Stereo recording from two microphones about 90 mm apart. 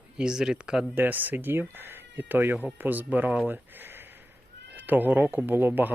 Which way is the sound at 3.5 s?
20° right (ahead or behind).